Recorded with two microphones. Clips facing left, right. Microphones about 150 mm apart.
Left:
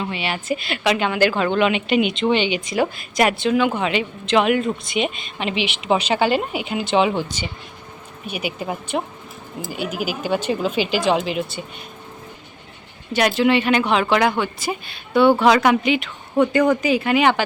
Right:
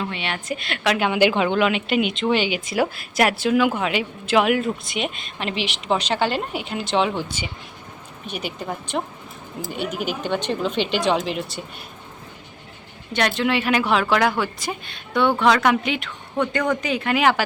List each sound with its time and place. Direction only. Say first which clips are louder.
0.0 s a woman's voice: left 2 dB; 5° left (ahead or behind); by 1.6 s 10° right (ahead or behind)
1.6 s a woman's voice: left 2 dB; centre (ahead or behind)
7.3 s speech: left 2 dB; 10° right (ahead or behind)
8.3 s a woman's voice: left 3 dB; 10° left (ahead or behind)
13.1 s a woman's voice: left 4 dB; 5° left (ahead or behind)